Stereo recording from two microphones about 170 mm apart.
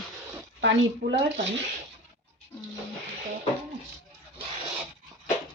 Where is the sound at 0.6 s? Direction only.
90° right.